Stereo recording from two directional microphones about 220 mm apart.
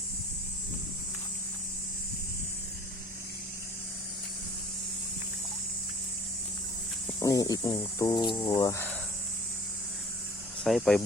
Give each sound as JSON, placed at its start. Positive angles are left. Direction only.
{"t": 7.1, "sound": "speech", "side_deg": 15}
{"t": 10.6, "sound": "speech", "side_deg": 0}